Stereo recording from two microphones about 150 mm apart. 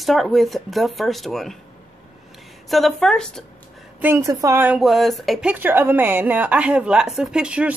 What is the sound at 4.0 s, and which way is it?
Speech, 20° right (ahead or behind).